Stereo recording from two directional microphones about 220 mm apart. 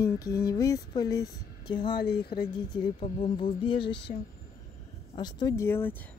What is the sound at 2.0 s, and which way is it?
Speech, 45° left (ahead or behind).